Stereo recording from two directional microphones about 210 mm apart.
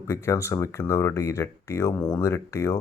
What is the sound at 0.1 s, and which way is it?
Speech, 15° left (ahead or behind).